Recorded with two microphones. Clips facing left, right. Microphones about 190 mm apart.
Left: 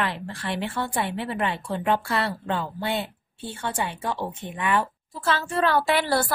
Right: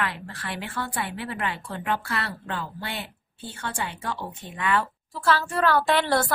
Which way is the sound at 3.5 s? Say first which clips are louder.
Left 3 dB; 20° left (ahead or behind).